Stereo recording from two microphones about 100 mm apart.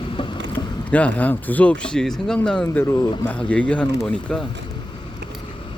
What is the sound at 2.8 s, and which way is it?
Speech, 30° left (ahead or behind).